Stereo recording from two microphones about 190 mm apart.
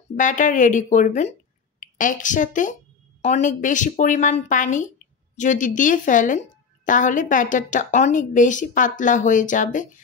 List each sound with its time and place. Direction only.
0.1 s a woman's voice: 40° left (ahead or behind)